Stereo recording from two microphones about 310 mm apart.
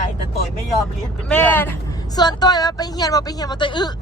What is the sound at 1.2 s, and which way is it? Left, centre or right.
Speech, centre.